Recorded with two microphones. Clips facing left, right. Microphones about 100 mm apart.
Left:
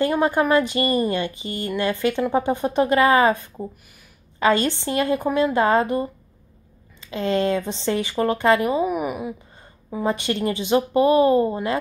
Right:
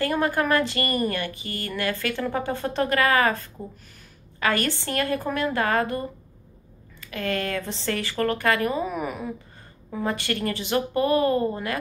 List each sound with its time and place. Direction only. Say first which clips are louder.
0.0 s a woman's voice: left 4 dB; 20° left (ahead or behind)